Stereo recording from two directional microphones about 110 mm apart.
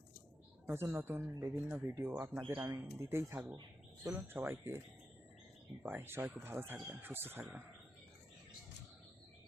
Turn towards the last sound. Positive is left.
turn(degrees=-20)  # may be behind; listen again after turning